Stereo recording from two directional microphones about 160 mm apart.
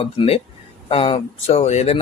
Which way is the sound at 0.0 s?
35° left (ahead or behind).